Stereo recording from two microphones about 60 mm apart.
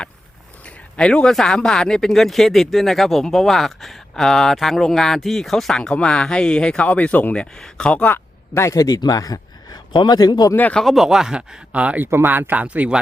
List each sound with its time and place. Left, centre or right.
0.9 s speech: centre
5.9 s speech: centre
7.3 s speech: centre
8.5 s a man's voice: left
10.8 s speech: centre
11.7 s speech: right
12.1 s speech: right